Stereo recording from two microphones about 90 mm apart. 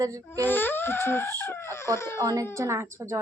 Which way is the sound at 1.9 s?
30° left (ahead or behind).